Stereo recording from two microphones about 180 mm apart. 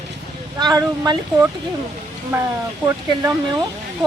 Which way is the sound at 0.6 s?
20° right (ahead or behind).